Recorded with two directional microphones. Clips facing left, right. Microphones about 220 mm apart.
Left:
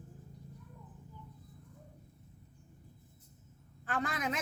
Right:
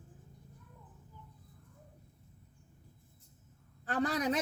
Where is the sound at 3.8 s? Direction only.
35° right (ahead or behind).